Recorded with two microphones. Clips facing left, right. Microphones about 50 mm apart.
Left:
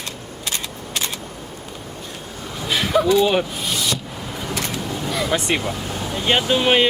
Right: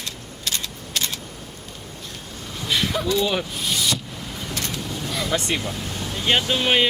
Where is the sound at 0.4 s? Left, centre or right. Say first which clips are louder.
Left 1 dB; left.